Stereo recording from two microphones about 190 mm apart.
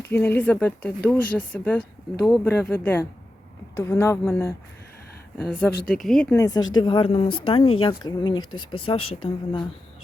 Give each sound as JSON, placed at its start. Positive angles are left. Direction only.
{"t": 0.1, "sound": "speech", "side_deg": 10}
{"t": 5.5, "sound": "speech", "side_deg": 5}
{"t": 6.3, "sound": "speech", "side_deg": 20}